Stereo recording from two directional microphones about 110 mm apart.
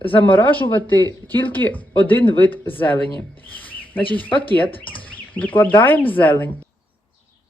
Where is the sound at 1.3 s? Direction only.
20° left (ahead or behind).